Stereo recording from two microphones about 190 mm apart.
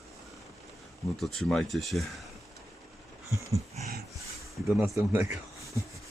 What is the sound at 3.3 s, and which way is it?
Dog, 15° right (ahead or behind).